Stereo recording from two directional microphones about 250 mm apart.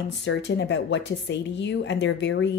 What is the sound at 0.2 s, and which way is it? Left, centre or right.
A woman's voice, left.